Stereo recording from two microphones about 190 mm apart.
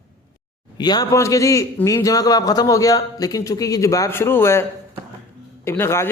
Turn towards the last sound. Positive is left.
turn(degrees=15)  # may be behind; listen again after turning